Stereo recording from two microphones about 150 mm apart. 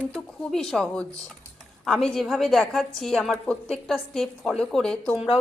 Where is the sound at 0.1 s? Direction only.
5° left (ahead or behind).